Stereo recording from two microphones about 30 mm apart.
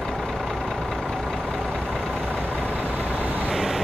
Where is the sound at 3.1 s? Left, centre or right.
Right.